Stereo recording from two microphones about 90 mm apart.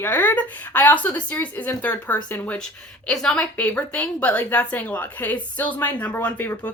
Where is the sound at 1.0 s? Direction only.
15° left (ahead or behind).